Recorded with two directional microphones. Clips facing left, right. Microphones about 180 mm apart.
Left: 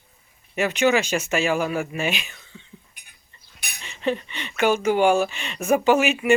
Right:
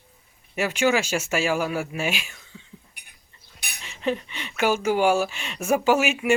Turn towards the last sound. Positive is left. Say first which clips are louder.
# left 2 dB
turn(degrees=-5)  # may be behind; listen again after turning